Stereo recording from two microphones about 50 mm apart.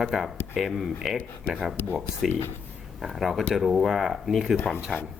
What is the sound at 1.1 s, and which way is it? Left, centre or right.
Speech, right.